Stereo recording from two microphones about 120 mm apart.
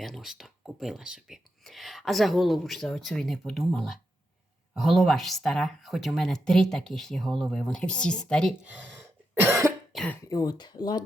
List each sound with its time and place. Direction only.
0.0 s speech: 5° right (ahead or behind)
8.6 s speech: 10° right (ahead or behind)
9.4 s cough: 25° right (ahead or behind)
10.2 s speech: 30° left (ahead or behind)